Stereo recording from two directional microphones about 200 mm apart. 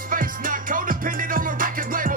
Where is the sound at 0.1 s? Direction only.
45° right (ahead or behind).